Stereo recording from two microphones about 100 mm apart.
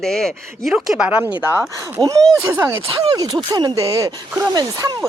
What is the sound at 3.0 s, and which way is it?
Speech, 45° right (ahead or behind).